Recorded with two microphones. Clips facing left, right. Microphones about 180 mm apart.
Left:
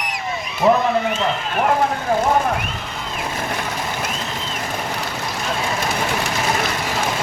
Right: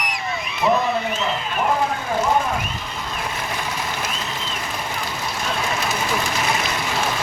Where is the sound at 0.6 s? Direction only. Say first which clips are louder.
Left 4 dB; 40° left (ahead or behind).